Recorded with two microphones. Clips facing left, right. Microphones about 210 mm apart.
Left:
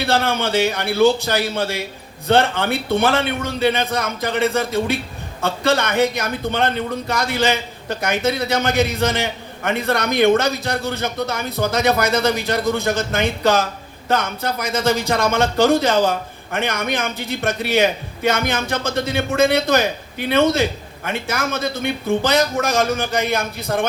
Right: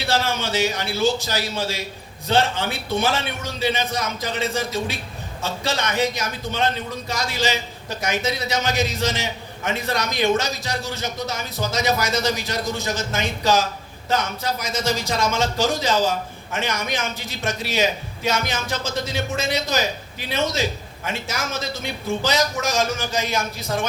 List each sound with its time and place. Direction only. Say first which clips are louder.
0.0 s speech: left 4 dB; 60° left (ahead or behind)